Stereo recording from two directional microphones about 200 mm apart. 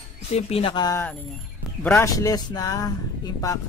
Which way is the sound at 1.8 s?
10° left (ahead or behind).